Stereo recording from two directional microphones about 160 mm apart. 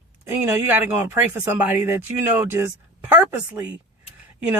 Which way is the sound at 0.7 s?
10° right (ahead or behind).